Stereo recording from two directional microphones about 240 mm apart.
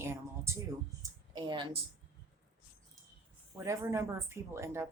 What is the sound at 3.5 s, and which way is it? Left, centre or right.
Speech, centre.